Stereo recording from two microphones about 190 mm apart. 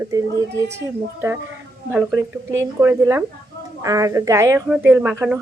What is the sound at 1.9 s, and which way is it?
Speech, 10° right (ahead or behind).